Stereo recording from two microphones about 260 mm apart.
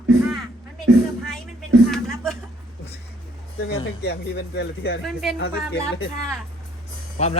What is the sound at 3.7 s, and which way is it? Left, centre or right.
Speech, left.